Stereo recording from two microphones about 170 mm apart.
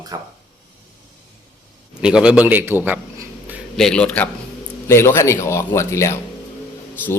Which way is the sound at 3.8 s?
5° left (ahead or behind).